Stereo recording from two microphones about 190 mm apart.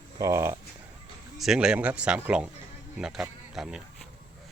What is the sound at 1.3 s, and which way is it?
Speech, centre (ahead or behind).